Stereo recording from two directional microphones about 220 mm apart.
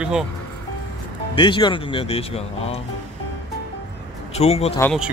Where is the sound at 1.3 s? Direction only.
20° left (ahead or behind).